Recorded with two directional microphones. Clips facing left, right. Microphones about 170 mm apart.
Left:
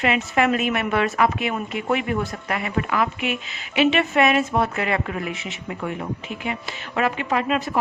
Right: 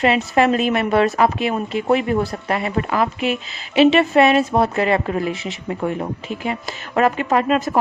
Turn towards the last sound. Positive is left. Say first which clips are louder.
# right 5 dB
turn(degrees=-40)  # may be behind; listen again after turning